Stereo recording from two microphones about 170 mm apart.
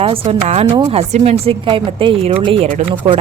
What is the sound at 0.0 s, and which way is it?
Speech, 35° right (ahead or behind).